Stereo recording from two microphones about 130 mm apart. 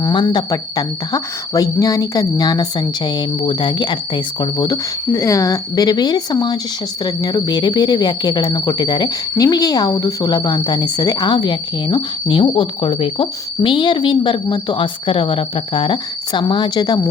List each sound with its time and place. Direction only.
0.0 s speech: 35° left (ahead or behind)